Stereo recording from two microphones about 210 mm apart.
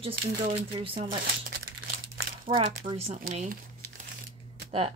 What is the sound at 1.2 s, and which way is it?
Crumpling, 45° right (ahead or behind).